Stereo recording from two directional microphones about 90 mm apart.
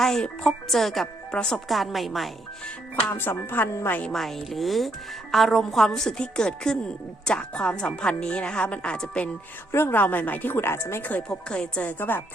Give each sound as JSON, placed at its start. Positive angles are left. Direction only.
{"t": 0.0, "sound": "speech", "side_deg": 5}
{"t": 3.2, "sound": "speech", "side_deg": 25}
{"t": 4.1, "sound": "speech", "side_deg": 5}
{"t": 9.7, "sound": "speech", "side_deg": 25}
{"t": 11.3, "sound": "speech", "side_deg": 10}